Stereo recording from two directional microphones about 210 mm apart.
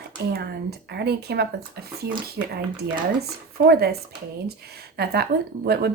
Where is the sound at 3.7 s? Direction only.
50° right (ahead or behind).